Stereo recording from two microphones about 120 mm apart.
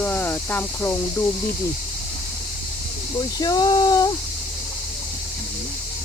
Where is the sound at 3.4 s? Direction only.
35° left (ahead or behind).